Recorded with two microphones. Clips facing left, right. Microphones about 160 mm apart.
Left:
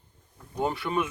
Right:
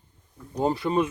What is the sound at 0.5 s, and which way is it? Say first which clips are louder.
Speech: right 4 dB; 35° right (ahead or behind).